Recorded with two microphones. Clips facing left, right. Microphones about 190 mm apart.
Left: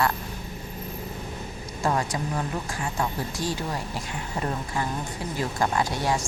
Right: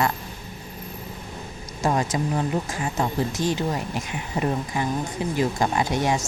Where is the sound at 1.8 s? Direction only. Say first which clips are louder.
Right 3 dB; 20° right (ahead or behind).